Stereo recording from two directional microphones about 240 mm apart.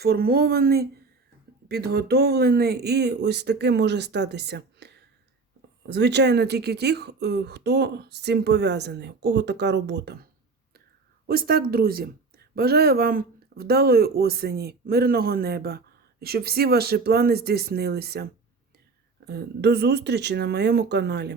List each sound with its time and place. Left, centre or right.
0.0 s speech: right
11.3 s speech: right